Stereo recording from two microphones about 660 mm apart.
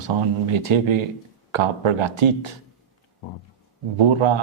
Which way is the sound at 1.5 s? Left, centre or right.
Right.